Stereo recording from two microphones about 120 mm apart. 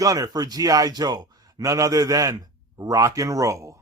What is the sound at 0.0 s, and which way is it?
A man's voice, 30° right (ahead or behind).